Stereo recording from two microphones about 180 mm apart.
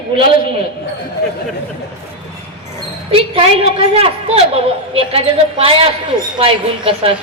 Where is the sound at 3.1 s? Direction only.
30° right (ahead or behind).